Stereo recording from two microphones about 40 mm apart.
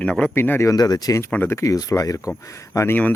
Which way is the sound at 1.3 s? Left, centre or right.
Left.